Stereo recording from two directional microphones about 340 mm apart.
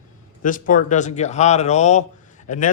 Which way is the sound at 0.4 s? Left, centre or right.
Left.